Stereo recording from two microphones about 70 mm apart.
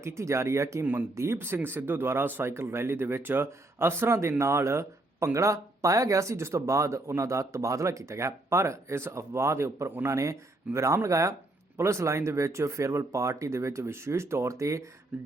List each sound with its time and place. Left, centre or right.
0.0 s speech: right